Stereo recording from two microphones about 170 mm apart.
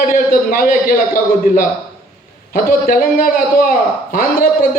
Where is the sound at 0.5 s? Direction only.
55° left (ahead or behind).